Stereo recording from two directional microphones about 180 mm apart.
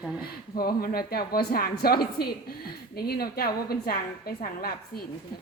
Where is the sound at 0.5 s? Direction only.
55° left (ahead or behind).